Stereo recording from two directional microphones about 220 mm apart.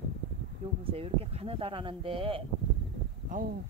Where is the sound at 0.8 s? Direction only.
25° right (ahead or behind).